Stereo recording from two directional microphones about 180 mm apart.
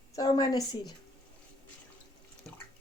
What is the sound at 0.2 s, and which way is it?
Speech, 20° left (ahead or behind).